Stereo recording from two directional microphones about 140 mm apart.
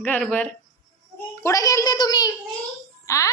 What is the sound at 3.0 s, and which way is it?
Music, 20° left (ahead or behind).